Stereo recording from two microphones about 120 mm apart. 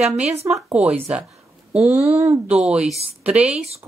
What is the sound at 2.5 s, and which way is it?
A woman's voice, 10° right (ahead or behind).